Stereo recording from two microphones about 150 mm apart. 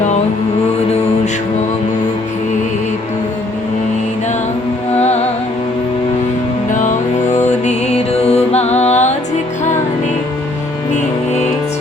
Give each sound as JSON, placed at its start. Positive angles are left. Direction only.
{"t": 7.6, "sound": "music", "side_deg": 45}